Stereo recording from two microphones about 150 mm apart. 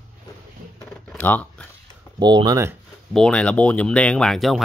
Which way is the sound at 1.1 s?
10° left (ahead or behind).